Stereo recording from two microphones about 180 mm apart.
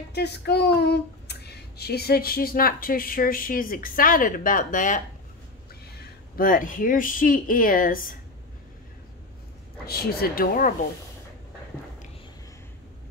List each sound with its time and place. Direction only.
0.1 s speech: 65° left (ahead or behind); by 5.0 s 45° left (ahead or behind)
5.9 s speech: 60° left (ahead or behind)
9.8 s speech: 60° left (ahead or behind)